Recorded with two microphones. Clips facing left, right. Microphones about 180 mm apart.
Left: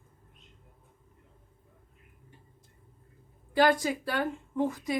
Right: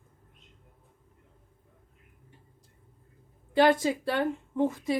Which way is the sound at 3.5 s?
25° right (ahead or behind).